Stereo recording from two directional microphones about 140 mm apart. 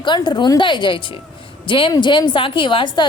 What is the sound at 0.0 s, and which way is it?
Speech, 35° left (ahead or behind).